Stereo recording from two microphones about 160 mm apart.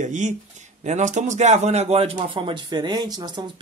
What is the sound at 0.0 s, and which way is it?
Speech, 50° right (ahead or behind).